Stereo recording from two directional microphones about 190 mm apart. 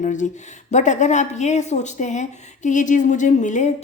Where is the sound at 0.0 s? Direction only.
40° left (ahead or behind).